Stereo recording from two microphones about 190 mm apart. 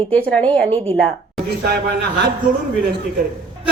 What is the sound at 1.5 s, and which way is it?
Speech, 60° right (ahead or behind).